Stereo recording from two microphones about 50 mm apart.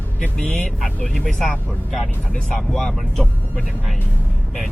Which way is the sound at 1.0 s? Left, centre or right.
Centre.